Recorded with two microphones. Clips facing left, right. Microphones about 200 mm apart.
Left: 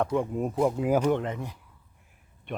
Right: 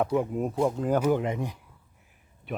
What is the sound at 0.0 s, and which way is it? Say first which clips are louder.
Speech: right 1 dB; 5° right (ahead or behind).